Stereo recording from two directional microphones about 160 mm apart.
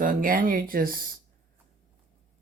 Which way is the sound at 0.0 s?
60° right (ahead or behind).